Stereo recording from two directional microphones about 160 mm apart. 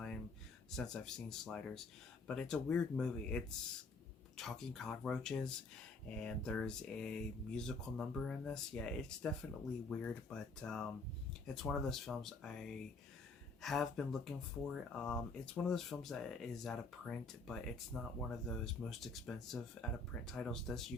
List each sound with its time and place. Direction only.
0.8 s speech: 5° left (ahead or behind)